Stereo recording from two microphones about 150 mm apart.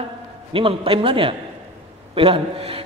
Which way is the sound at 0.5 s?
35° right (ahead or behind).